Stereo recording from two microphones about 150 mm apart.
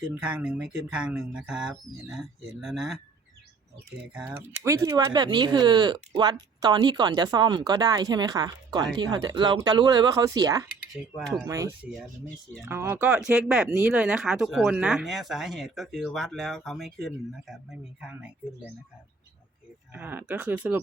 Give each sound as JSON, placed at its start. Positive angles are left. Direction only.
{"t": 0.0, "sound": "speech", "side_deg": -10}
{"t": 4.1, "sound": "speech", "side_deg": -10}
{"t": 4.6, "sound": "speech", "side_deg": -20}
{"t": 19.9, "sound": "speech", "side_deg": -10}